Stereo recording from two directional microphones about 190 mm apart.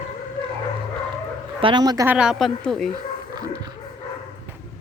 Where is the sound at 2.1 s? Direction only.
5° right (ahead or behind).